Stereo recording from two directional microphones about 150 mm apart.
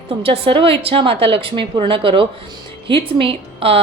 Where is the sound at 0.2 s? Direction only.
40° right (ahead or behind).